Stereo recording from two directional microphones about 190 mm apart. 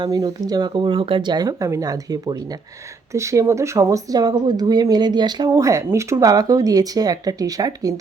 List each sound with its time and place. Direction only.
0.0 s speech: 20° right (ahead or behind)